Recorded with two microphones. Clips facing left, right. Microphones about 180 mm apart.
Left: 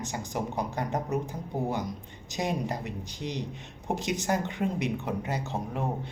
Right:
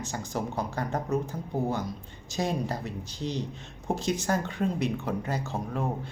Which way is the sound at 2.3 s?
15° left (ahead or behind).